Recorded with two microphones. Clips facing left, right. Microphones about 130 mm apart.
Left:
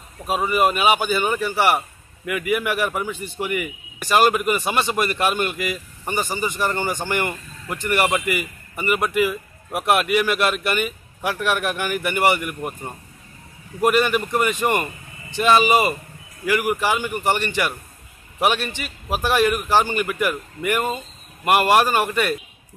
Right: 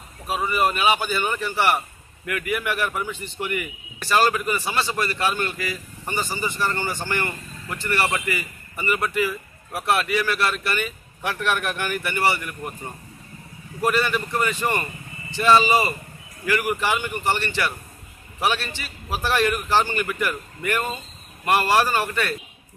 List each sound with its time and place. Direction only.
0.5 s speech: 15° left (ahead or behind)